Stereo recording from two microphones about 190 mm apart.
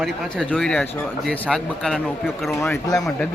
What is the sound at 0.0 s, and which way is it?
Speech, centre (ahead or behind).